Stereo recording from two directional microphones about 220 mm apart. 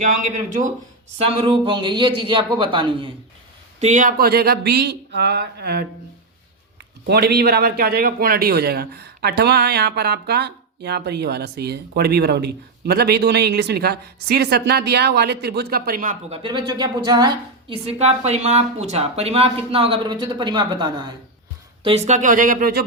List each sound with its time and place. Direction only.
1.2 s a woman's voice: 25° right (ahead or behind)
3.8 s speech: 35° right (ahead or behind)
7.1 s speech: 45° right (ahead or behind)
16.3 s a woman's voice: 20° right (ahead or behind)
21.8 s speech: 30° right (ahead or behind)